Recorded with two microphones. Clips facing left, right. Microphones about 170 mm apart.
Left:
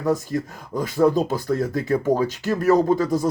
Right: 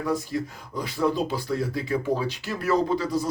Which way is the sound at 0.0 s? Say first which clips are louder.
Left 4 dB; 45° left (ahead or behind).